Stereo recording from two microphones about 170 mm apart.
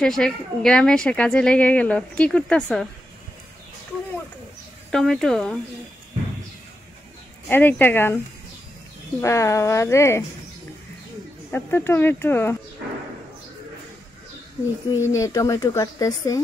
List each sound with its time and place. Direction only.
0.0 s speech: 5° left (ahead or behind)
4.9 s speech: 5° left (ahead or behind)
7.4 s speech: 10° left (ahead or behind)
9.2 s speech: 15° left (ahead or behind)
11.5 s speech: 15° left (ahead or behind)
14.9 s speech: 15° left (ahead or behind)